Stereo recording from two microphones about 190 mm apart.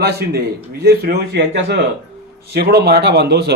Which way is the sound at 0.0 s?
60° right (ahead or behind).